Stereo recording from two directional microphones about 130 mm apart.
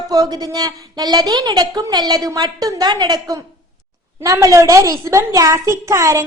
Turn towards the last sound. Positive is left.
turn(degrees=-25)  # may be behind; listen again after turning